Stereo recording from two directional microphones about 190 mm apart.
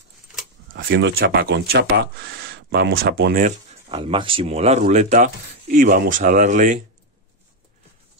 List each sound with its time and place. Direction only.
0.8 s speech: 60° right (ahead or behind)
3.9 s speech: 30° right (ahead or behind)